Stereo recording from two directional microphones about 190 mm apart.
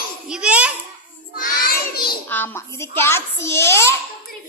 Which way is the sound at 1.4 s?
50° left (ahead or behind).